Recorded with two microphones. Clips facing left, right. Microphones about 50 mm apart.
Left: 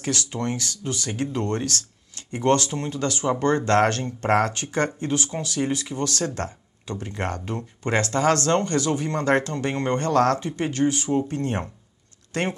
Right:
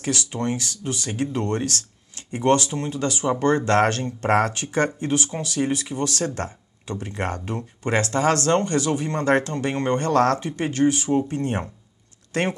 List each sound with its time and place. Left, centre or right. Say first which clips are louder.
0.3 s speech: right 2 dB; right